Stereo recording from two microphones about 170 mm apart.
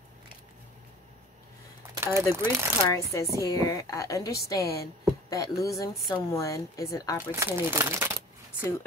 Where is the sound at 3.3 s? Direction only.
20° left (ahead or behind).